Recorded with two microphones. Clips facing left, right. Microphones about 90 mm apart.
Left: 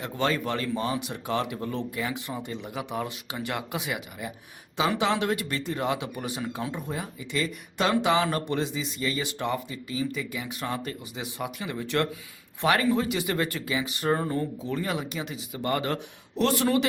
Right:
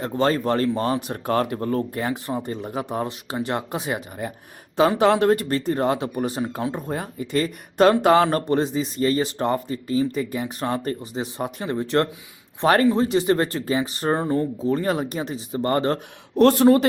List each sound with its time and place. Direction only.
0.0 s speech: 40° right (ahead or behind)
16.3 s a man's voice: 45° right (ahead or behind)